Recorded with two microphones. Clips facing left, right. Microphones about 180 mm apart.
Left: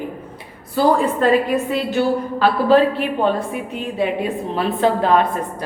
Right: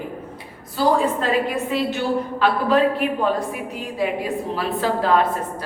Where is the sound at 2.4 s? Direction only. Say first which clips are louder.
Left 4 dB; 30° left (ahead or behind).